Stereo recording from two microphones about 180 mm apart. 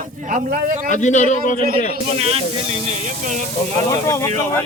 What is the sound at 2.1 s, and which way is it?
Speech, 35° right (ahead or behind).